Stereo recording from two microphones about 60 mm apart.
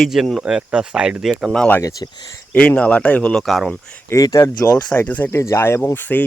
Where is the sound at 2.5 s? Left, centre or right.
Centre.